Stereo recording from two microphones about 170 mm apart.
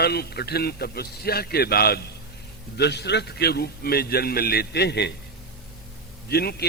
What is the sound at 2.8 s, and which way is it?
A man's voice, 80° left.